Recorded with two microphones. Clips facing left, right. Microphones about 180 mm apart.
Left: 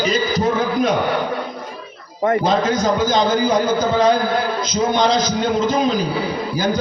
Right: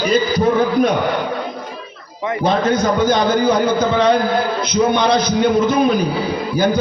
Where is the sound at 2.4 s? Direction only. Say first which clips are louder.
Right 1 dB; 60° right (ahead or behind).